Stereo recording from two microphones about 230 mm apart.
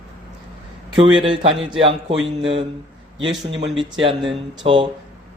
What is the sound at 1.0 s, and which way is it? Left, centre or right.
Speech, right.